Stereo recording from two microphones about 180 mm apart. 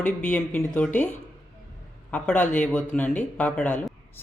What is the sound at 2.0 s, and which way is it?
A man's voice, 5° left (ahead or behind).